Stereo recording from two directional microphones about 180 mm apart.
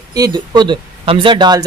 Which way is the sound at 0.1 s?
20° right (ahead or behind).